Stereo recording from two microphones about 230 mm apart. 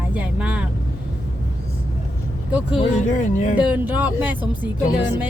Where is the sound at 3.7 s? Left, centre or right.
Centre.